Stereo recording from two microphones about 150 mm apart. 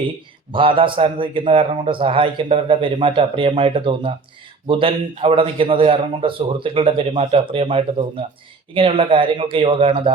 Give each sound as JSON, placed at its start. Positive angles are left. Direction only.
{"t": 0.5, "sound": "a man's voice", "side_deg": -35}